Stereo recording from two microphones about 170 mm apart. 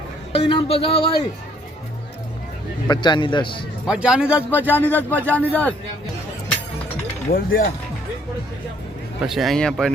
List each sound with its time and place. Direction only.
0.3 s speech: 35° left (ahead or behind)
2.8 s a man's voice: 25° left (ahead or behind)
3.8 s speech: 5° right (ahead or behind)
4.7 s a man's voice: 10° left (ahead or behind)
7.3 s speech: 60° left (ahead or behind)
9.2 s speech: centre (ahead or behind)